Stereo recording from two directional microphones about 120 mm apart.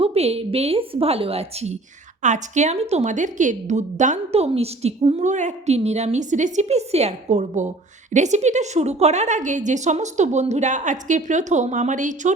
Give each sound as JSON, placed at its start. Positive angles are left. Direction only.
{"t": 0.0, "sound": "a woman's voice", "side_deg": -60}
{"t": 2.2, "sound": "a woman's voice", "side_deg": -85}